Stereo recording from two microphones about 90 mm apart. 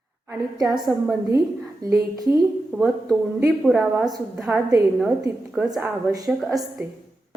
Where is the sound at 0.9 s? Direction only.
15° right (ahead or behind).